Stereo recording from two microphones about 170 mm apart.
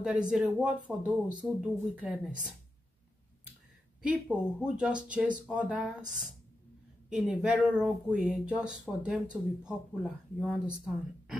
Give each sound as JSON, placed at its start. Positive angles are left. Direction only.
{"t": 0.0, "sound": "speech", "side_deg": -5}
{"t": 4.0, "sound": "speech", "side_deg": -5}